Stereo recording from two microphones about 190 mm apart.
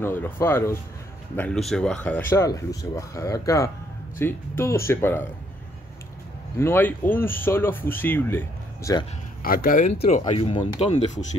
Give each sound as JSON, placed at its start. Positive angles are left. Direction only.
{"t": 0.0, "sound": "speech", "side_deg": 10}
{"t": 6.6, "sound": "speech", "side_deg": 10}
{"t": 9.4, "sound": "speech", "side_deg": 50}